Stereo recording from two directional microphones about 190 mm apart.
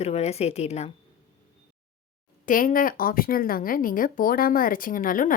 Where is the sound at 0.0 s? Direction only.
35° left (ahead or behind).